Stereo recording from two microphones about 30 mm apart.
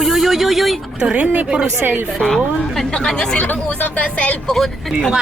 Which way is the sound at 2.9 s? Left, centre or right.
Left.